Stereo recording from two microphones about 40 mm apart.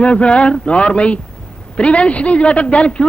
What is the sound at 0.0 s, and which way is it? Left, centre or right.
A man's voice, left.